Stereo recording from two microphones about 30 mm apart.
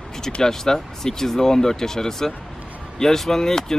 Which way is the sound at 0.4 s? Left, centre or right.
Centre.